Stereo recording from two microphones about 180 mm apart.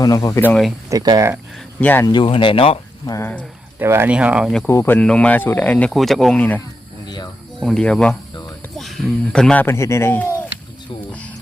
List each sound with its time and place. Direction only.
0.0 s speech: 20° left (ahead or behind)
0.9 s speech: 20° right (ahead or behind)
1.8 s speech: 10° left (ahead or behind)
2.0 s speech: 25° left (ahead or behind)
3.1 s speech: 10° left (ahead or behind)
3.8 s speech: 15° right (ahead or behind)
4.6 s speech: 10° left (ahead or behind)
7.6 s speech: 5° left (ahead or behind)